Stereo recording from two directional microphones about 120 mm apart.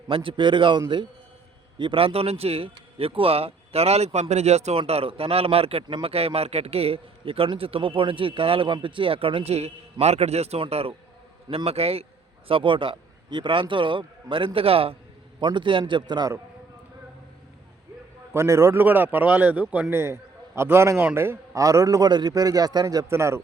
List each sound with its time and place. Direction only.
0.1 s speech: 45° right (ahead or behind); by 4.8 s 65° right (ahead or behind)
4.8 s speech: 55° right (ahead or behind)
12.5 s speech: 45° right (ahead or behind)
15.4 s a man's voice: 40° right (ahead or behind)
18.3 s a man's voice: 25° right (ahead or behind)